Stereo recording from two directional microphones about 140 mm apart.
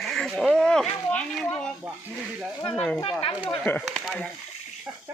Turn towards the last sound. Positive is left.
turn(degrees=10)  # may be behind; listen again after turning